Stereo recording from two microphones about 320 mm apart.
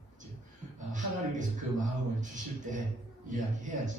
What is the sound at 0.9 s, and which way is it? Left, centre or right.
A man's voice, right.